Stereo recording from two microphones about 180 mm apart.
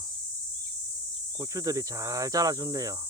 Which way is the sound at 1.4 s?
20° right (ahead or behind).